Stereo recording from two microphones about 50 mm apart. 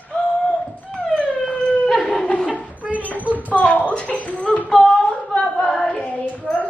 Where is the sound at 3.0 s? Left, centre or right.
Left.